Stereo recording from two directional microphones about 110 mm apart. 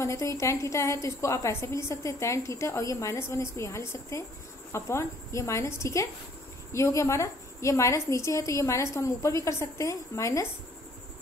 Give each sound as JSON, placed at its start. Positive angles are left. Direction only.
{"t": 0.0, "sound": "a woman's voice", "side_deg": 30}